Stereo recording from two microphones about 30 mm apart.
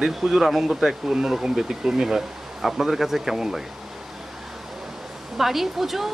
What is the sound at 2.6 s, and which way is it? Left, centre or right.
Speech, centre.